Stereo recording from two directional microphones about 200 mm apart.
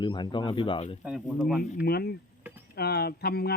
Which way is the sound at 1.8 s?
50° left (ahead or behind).